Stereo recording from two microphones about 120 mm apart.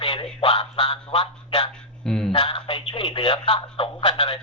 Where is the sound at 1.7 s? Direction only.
5° left (ahead or behind).